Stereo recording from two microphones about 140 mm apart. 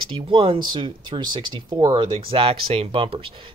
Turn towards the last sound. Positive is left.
turn(degrees=-40)  # may be behind; listen again after turning